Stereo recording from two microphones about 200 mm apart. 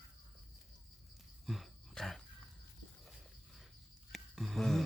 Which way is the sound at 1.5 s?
Centre (ahead or behind).